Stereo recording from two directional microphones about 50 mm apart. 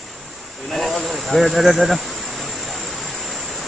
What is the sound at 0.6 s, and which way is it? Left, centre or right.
Insect, centre.